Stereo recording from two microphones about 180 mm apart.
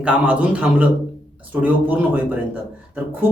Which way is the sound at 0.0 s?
5° right (ahead or behind).